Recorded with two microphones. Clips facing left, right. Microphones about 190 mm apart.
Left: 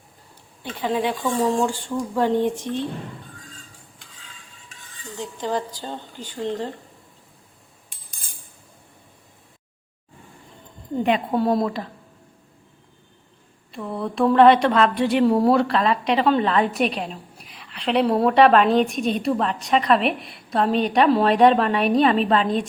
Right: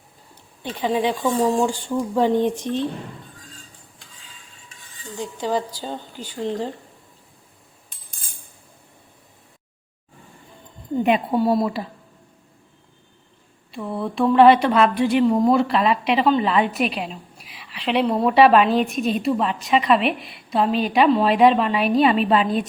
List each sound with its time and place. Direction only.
0.6 s speech: 20° right (ahead or behind)
5.1 s speech: 10° right (ahead or behind)
11.0 s speech: 15° right (ahead or behind)
11.3 s a woman's voice: 5° right (ahead or behind)
13.7 s a woman's voice: centre (ahead or behind)